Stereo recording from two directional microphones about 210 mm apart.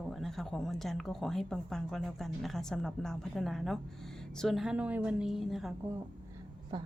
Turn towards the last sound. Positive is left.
turn(degrees=-20)  # may be behind; listen again after turning